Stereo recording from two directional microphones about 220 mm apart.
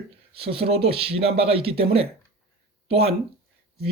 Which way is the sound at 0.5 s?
25° right (ahead or behind).